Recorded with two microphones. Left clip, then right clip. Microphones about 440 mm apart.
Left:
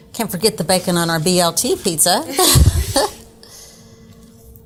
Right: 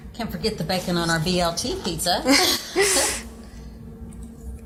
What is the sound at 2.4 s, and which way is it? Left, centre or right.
Speech, left.